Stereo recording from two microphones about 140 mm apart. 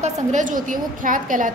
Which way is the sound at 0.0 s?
60° right (ahead or behind).